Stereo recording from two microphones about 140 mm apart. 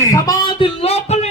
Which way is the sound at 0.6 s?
45° left (ahead or behind).